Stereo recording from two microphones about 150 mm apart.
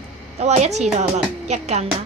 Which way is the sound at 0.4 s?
50° right (ahead or behind).